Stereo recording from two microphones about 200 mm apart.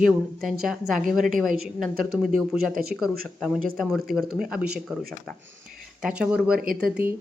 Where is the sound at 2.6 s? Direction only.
45° right (ahead or behind).